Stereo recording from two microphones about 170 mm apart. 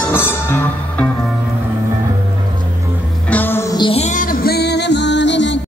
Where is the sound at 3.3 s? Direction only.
10° left (ahead or behind).